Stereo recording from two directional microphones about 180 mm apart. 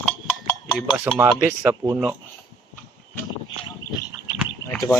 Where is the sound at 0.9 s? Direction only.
10° right (ahead or behind).